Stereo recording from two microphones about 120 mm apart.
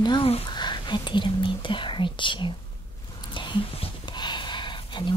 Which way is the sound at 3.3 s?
40° left (ahead or behind).